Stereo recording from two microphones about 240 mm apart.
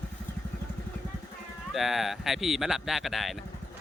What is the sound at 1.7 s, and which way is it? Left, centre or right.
A man's voice, centre.